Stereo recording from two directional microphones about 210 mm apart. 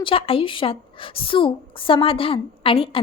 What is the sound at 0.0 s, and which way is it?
A woman's voice, 25° left (ahead or behind).